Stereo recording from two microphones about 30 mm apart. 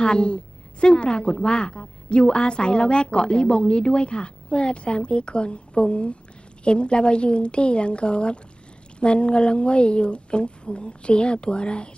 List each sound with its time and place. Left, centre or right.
0.0 s a woman's voice: left